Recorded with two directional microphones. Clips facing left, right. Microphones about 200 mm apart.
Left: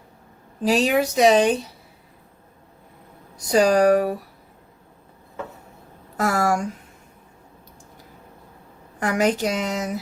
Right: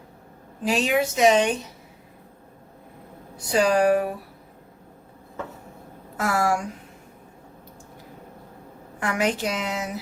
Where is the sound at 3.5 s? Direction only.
40° left (ahead or behind).